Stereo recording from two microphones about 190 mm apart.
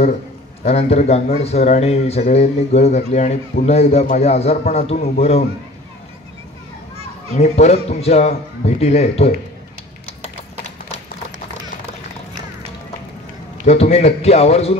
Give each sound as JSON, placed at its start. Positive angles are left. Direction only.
{"t": 0.7, "sound": "speech", "side_deg": 35}
{"t": 7.3, "sound": "speech", "side_deg": 35}
{"t": 13.7, "sound": "speech", "side_deg": 35}